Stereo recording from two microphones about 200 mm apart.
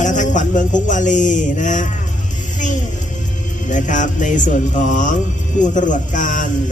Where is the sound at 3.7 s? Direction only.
40° left (ahead or behind).